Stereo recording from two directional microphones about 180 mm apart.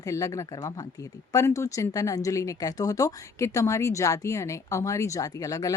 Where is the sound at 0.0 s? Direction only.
15° left (ahead or behind).